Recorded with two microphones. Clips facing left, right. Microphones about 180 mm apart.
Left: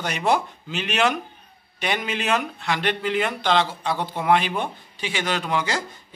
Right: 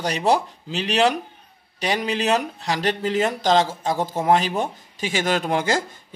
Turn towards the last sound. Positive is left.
turn(degrees=-50)  # may be behind; listen again after turning